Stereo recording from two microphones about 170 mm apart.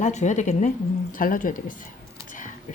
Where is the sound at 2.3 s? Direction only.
50° left (ahead or behind).